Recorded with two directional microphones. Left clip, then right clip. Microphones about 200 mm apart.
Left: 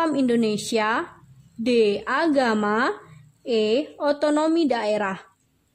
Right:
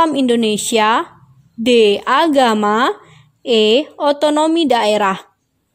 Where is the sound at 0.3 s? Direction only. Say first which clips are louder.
Right 7 dB; 35° right (ahead or behind).